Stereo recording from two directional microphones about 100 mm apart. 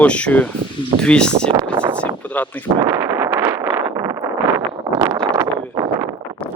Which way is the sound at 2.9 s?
25° right (ahead or behind).